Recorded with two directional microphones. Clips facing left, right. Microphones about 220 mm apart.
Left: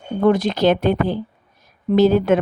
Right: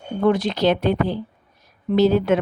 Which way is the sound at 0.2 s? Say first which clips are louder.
Left 2 dB; 45° left (ahead or behind).